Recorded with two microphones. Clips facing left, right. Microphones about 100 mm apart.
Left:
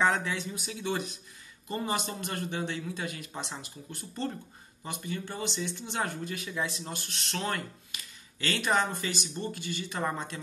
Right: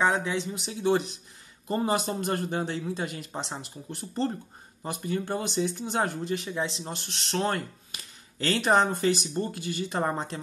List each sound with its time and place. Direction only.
0.0 s speech: 20° right (ahead or behind)